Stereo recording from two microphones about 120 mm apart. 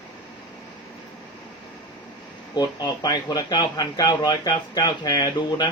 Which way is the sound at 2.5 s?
35° left (ahead or behind).